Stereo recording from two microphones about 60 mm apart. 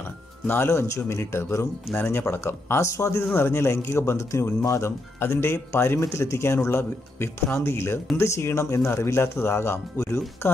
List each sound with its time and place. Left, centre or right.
0.5 s speech: left